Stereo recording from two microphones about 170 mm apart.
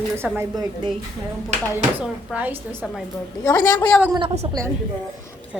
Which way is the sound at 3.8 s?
5° left (ahead or behind).